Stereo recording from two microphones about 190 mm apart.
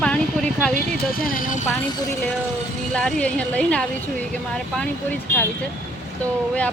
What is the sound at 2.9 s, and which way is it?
Speech, 5° left (ahead or behind).